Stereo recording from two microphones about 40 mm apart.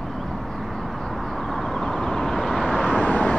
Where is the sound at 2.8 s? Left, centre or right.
Left.